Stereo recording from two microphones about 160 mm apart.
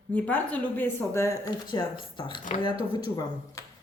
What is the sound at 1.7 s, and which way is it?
Speech, 30° left (ahead or behind).